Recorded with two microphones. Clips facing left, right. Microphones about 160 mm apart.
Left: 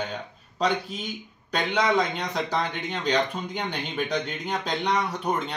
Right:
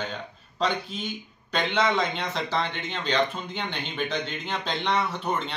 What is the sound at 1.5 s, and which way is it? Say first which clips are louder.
Speech: left 1 dB; 10° left (ahead or behind).